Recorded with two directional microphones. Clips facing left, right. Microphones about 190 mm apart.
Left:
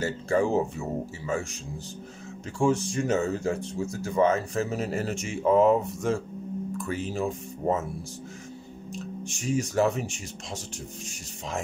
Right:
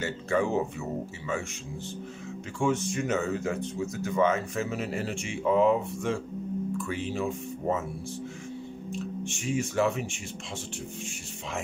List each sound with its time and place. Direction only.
0.0 s speech: 35° left (ahead or behind)
2.6 s speech: 35° left (ahead or behind)
8.9 s speech: 40° left (ahead or behind)